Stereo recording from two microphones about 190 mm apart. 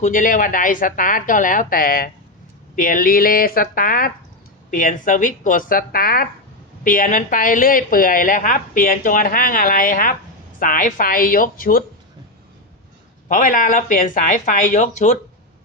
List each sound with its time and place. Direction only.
0.0 s a woman's voice: 45° left (ahead or behind)
13.2 s a woman's voice: 45° left (ahead or behind)